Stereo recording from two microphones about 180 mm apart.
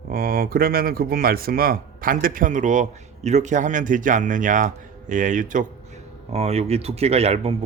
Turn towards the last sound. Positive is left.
turn(degrees=-35)  # may be behind; listen again after turning